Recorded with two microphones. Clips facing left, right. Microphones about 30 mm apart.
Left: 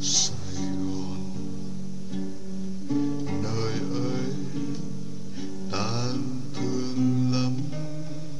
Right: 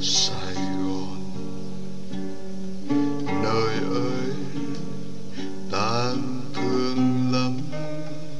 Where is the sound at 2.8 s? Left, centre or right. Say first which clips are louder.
Right 4 dB; right.